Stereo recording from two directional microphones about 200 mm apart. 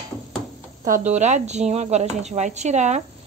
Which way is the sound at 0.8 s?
40° right (ahead or behind).